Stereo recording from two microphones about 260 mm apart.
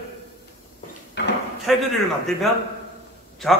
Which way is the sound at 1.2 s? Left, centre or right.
Left.